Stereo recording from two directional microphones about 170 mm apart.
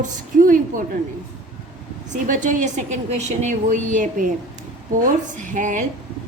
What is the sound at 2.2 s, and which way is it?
A woman's voice, 50° right (ahead or behind).